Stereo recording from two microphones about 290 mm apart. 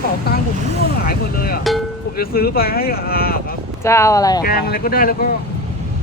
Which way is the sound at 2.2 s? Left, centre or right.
Left.